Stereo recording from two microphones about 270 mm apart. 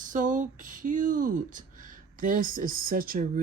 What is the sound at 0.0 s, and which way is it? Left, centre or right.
Speech, right.